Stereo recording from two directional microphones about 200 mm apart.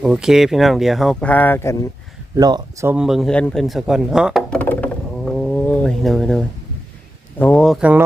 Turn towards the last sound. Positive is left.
turn(degrees=-5)  # may be behind; listen again after turning